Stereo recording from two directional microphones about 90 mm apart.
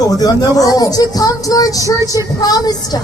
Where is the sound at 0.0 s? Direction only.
40° left (ahead or behind).